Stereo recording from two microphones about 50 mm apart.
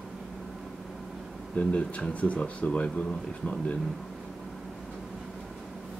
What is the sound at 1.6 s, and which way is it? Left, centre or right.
Speech, left.